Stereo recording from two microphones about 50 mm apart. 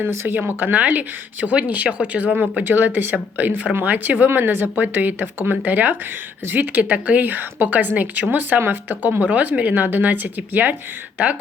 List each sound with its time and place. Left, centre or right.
0.0 s speech: right
0.3 s a woman's voice: right